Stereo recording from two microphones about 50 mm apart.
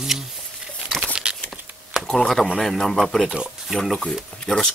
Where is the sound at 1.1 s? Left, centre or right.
Centre.